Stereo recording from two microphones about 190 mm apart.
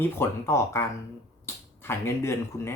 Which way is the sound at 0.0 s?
15° left (ahead or behind).